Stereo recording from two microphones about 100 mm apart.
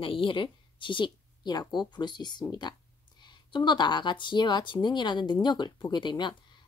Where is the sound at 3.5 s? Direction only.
50° left (ahead or behind).